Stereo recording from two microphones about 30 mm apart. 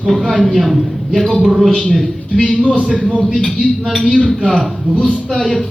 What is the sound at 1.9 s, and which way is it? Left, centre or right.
Speech, centre.